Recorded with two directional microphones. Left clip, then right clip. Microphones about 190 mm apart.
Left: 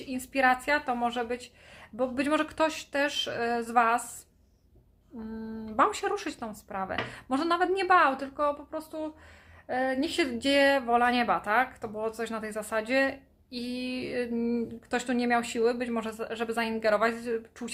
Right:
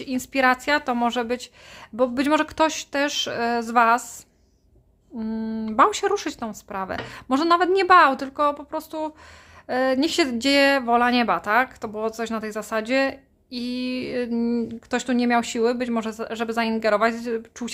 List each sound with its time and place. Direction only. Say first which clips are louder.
0.0 s speech: right 5 dB; 40° right (ahead or behind)
5.2 s speech: right 10 dB; 40° right (ahead or behind)